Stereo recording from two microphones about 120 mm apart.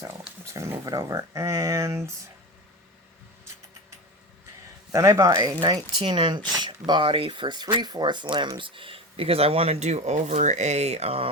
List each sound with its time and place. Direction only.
0.4 s speech: 25° right (ahead or behind)
4.9 s speech: 25° right (ahead or behind); by 11.3 s 55° right (ahead or behind)